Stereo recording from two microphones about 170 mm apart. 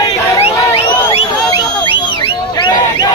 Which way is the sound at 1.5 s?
30° left (ahead or behind).